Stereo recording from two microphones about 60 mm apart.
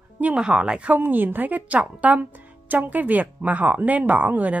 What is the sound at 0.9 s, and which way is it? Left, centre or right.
Speech, right.